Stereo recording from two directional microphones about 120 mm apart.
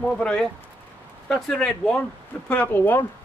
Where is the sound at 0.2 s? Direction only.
5° left (ahead or behind).